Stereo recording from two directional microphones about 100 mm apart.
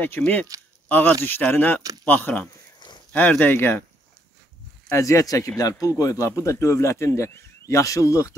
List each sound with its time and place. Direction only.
0.0 s speech: 15° left (ahead or behind)
4.8 s speech: 30° left (ahead or behind)